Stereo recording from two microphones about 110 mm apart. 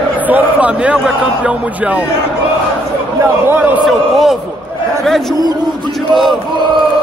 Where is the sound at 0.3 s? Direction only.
15° right (ahead or behind).